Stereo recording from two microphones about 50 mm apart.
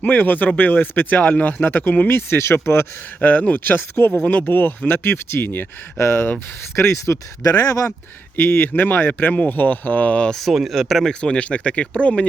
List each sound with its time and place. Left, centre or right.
0.0 s speech: left
2.1 s speech: left
3.2 s speech: left
6.0 s speech: left
7.6 s speech: left
8.4 s speech: left
10.3 s speech: centre
11.0 s speech: centre